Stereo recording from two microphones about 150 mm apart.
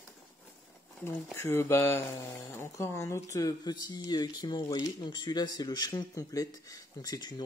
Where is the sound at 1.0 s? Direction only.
15° left (ahead or behind).